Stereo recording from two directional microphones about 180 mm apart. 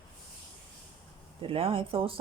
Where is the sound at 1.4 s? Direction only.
30° right (ahead or behind).